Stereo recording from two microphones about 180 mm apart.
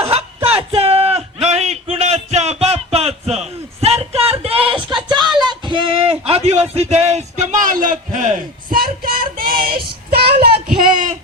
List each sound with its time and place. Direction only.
0.0 s a sound: 35° right (ahead or behind)
8.7 s music: 55° right (ahead or behind)
10.1 s child singing: 60° right (ahead or behind)